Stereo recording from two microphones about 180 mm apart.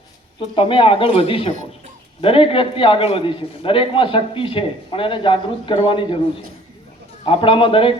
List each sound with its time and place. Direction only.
0.5 s a man's voice: 30° left (ahead or behind)
7.3 s a man's voice: 30° left (ahead or behind)